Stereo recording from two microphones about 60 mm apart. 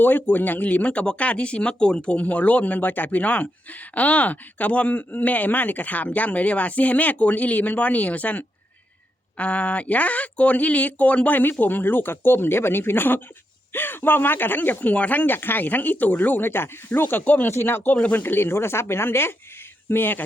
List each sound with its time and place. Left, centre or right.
0.0 s speech: left
17.5 s speech: left